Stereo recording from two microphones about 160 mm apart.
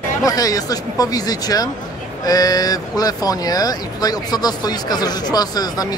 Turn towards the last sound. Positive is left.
turn(degrees=25)  # may be behind; listen again after turning